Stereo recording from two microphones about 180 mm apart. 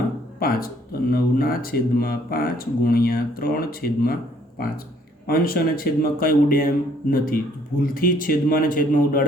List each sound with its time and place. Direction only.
0.3 s speech: 55° left (ahead or behind)